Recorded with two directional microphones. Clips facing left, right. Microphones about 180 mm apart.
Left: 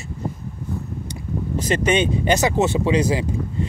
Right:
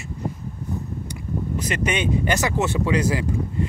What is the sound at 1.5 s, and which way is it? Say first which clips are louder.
Speech: left 6 dB; 30° left (ahead or behind).